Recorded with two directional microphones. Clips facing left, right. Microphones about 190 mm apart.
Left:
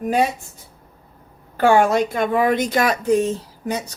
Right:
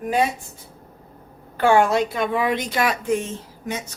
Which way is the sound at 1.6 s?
45° left (ahead or behind).